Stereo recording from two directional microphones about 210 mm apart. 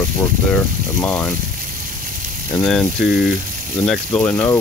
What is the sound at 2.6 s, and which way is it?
Speech, centre (ahead or behind).